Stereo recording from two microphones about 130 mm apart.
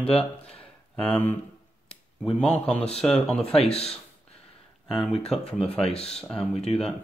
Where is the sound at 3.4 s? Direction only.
50° left (ahead or behind).